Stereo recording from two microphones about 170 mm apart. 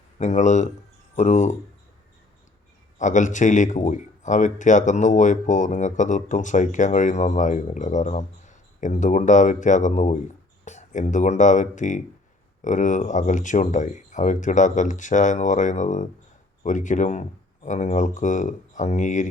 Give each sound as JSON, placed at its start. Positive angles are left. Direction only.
{"t": 0.2, "sound": "speech", "side_deg": 45}
{"t": 3.0, "sound": "speech", "side_deg": 45}